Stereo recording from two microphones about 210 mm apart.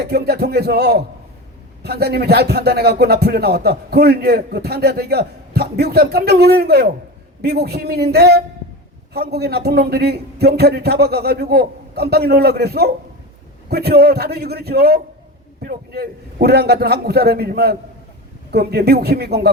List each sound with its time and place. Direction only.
0.0 s speech: 50° right (ahead or behind)